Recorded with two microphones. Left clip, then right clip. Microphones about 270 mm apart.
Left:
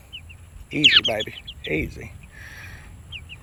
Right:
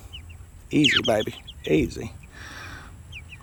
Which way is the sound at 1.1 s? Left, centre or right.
Right.